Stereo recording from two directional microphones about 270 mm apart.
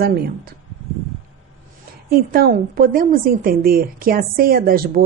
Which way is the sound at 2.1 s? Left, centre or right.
Right.